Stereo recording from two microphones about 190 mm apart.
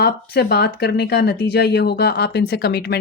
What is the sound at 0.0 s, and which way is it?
Speech, 55° left (ahead or behind).